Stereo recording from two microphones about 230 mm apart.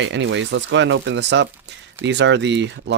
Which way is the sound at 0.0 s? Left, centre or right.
Right.